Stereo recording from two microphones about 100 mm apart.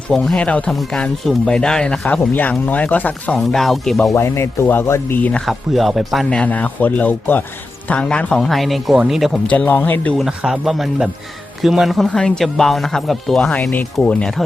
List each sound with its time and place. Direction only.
0.1 s speech: 10° left (ahead or behind)
4.1 s speech: 25° left (ahead or behind)
5.5 s speech: centre (ahead or behind)
6.3 s speech: 15° left (ahead or behind); by 9.4 s centre (ahead or behind)
9.5 s speech: 15° left (ahead or behind)
10.2 s speech: 5° right (ahead or behind); by 14.3 s 10° left (ahead or behind)